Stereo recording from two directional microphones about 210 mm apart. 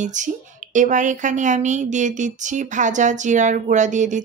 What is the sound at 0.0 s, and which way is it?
A woman's voice, 35° right (ahead or behind).